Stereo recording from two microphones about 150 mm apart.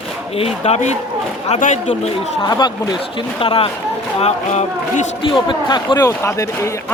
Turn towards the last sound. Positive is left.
turn(degrees=20)  # may be behind; listen again after turning